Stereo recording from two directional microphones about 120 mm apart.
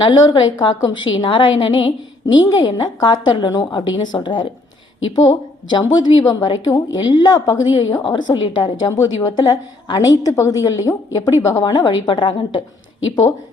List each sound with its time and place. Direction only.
0.0 s a woman's voice: 40° left (ahead or behind)
11.7 s a woman's voice: 40° left (ahead or behind)